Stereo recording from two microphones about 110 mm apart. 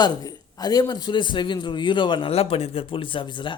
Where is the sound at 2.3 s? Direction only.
60° left (ahead or behind).